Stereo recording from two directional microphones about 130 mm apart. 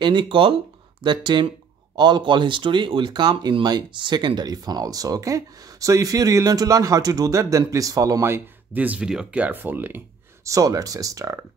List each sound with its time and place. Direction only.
0.0 s speech: 35° right (ahead or behind)